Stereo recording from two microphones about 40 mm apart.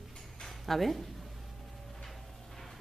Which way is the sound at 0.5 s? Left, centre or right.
Centre.